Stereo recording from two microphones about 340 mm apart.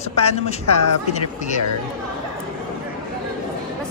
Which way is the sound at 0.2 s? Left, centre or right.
Centre.